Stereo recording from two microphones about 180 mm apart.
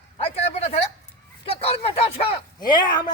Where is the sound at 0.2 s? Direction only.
35° left (ahead or behind).